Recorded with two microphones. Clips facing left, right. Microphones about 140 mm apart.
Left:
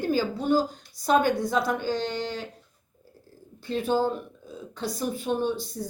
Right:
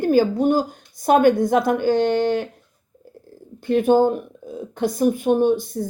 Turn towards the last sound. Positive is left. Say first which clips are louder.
# right 9 dB
turn(degrees=-50)  # may be behind; listen again after turning